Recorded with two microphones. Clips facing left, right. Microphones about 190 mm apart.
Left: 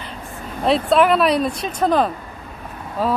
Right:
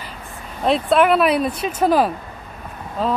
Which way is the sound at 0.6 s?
Centre (ahead or behind).